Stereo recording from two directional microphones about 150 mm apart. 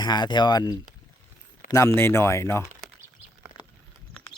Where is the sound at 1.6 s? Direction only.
65° left (ahead or behind).